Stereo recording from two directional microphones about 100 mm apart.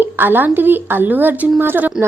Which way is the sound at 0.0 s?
20° right (ahead or behind).